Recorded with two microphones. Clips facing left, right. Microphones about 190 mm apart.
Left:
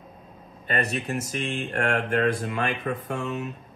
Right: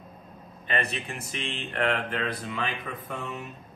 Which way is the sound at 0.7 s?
40° left (ahead or behind).